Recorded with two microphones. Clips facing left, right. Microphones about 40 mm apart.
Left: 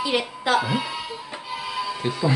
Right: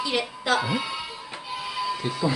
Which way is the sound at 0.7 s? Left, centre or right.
Centre.